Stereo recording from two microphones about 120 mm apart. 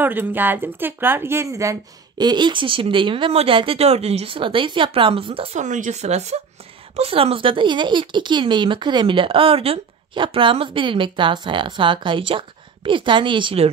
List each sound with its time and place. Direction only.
0.0 s speech: 15° right (ahead or behind); by 5.6 s 50° right (ahead or behind)
5.6 s speech: 90° right; by 13.7 s 45° right (ahead or behind)